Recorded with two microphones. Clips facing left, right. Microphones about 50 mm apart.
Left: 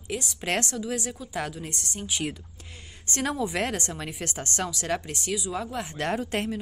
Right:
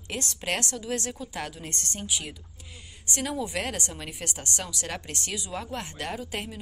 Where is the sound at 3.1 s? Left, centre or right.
Left.